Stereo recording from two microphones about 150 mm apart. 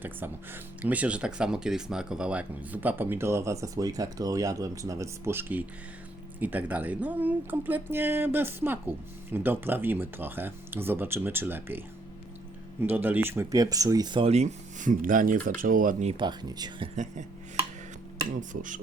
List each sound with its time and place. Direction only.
0.0 s speech: 10° right (ahead or behind)
12.8 s speech: 15° right (ahead or behind); by 14.3 s 30° right (ahead or behind)
14.3 s speech: 50° right (ahead or behind)
16.0 s speech: 30° right (ahead or behind)
16.9 s speech: 55° right (ahead or behind)
18.3 s speech: 60° right (ahead or behind)